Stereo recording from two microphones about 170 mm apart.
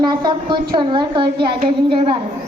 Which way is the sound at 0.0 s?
25° right (ahead or behind).